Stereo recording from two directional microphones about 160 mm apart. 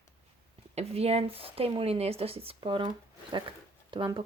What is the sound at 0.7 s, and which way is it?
Speech, 40° right (ahead or behind).